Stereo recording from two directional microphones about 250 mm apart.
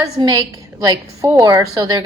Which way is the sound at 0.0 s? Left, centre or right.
Centre.